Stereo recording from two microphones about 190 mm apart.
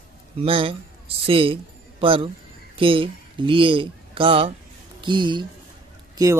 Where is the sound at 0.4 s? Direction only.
30° right (ahead or behind).